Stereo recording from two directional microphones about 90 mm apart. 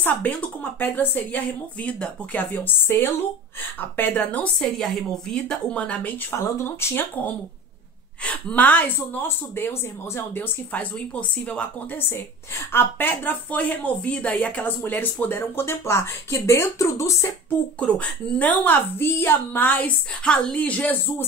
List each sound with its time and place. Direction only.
0.0 s a woman's voice: 15° left (ahead or behind)
6.3 s a woman's voice: 30° left (ahead or behind)
8.2 s a woman's voice: 15° left (ahead or behind)
12.1 s a woman's voice: 25° left (ahead or behind)
17.7 s a woman's voice: 15° left (ahead or behind)